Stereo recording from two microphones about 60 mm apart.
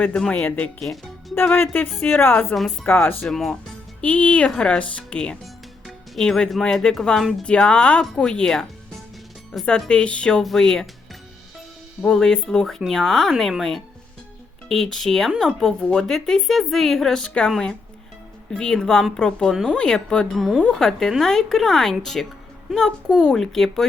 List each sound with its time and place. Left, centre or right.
0.1 s speech: centre
0.8 s speech: centre
1.4 s a woman's voice: left
3.2 s speech: centre
4.0 s speech: left
10.4 s speech: centre
12.0 s speech: centre
18.5 s speech: centre
20.3 s speech: centre
20.6 s speech: centre